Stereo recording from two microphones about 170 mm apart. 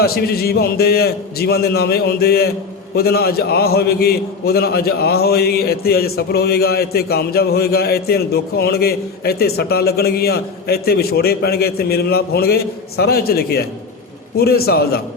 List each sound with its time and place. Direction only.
0.0 s a man's voice: 65° left (ahead or behind)